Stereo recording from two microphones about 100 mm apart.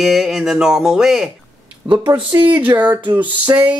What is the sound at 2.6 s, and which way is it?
Music, 20° right (ahead or behind).